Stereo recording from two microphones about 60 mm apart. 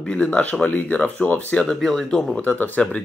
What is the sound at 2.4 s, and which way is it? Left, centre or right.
Speech, left.